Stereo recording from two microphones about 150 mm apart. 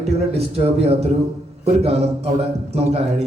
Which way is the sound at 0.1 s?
40° right (ahead or behind).